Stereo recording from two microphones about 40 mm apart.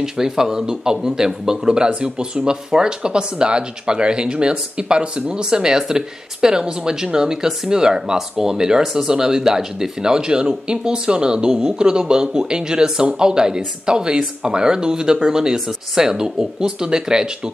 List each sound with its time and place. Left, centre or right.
0.0 s speech: centre